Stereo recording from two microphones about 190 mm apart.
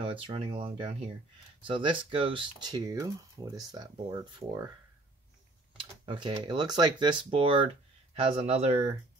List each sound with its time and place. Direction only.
0.0 s speech: 30° right (ahead or behind)
5.8 s speech: 25° right (ahead or behind)